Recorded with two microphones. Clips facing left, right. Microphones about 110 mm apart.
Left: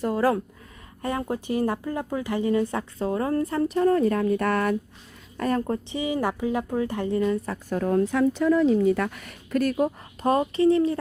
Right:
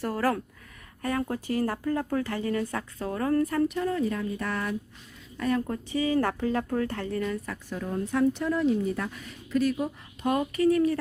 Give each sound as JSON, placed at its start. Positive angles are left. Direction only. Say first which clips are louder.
{"t": 0.0, "sound": "speech", "louder": "left 4 dB", "side_deg": 20}
{"t": 5.4, "sound": "a woman's voice", "louder": "left 3 dB", "side_deg": 40}
{"t": 6.0, "sound": "speech", "louder": "right 2 dB", "side_deg": 15}
{"t": 7.7, "sound": "speech", "louder": "left 9 dB", "side_deg": 55}
{"t": 7.9, "sound": "speech", "louder": "left 2 dB", "side_deg": 90}
{"t": 10.2, "sound": "speech", "louder": "left 4 dB", "side_deg": 30}